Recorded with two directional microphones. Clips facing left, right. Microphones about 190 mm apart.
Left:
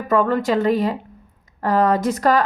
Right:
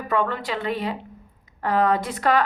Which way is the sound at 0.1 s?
45° left (ahead or behind).